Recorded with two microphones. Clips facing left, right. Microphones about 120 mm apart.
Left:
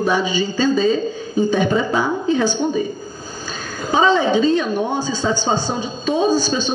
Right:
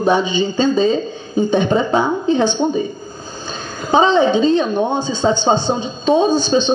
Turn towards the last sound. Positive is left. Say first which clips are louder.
# right 3 dB
turn(degrees=-25)  # may be behind; listen again after turning